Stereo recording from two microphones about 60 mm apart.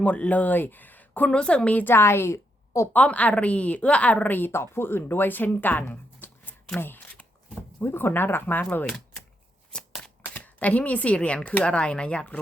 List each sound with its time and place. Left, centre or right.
0.0 s speech: left
1.3 s a woman's voice: centre
1.8 s a woman's voice: left
2.9 s speech: left
4.5 s speech: left
9.7 s shuffling cards: centre
10.3 s speech: left